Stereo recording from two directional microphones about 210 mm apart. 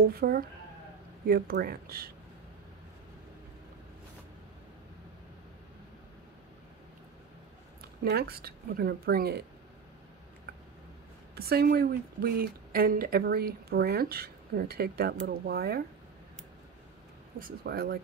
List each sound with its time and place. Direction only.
0.1 s speech: 45° right (ahead or behind)
8.0 s speech: 50° right (ahead or behind)
11.3 s speech: 50° right (ahead or behind)
17.4 s speech: 45° right (ahead or behind)